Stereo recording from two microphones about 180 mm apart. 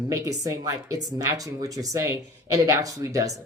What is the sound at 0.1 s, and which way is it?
Speech, 20° right (ahead or behind).